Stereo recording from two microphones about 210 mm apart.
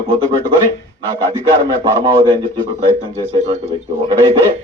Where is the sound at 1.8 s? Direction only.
20° right (ahead or behind).